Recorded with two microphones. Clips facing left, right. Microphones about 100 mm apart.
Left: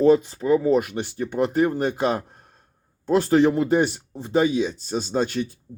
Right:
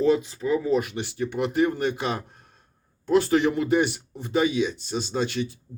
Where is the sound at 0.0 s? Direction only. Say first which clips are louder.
Left 5 dB; 45° left (ahead or behind).